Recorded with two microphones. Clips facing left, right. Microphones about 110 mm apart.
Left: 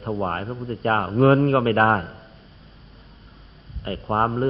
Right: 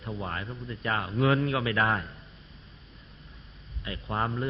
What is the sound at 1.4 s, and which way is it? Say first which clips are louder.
Speech: left 9 dB; 50° left (ahead or behind).